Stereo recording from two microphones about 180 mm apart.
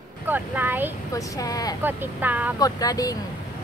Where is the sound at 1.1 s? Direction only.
20° left (ahead or behind).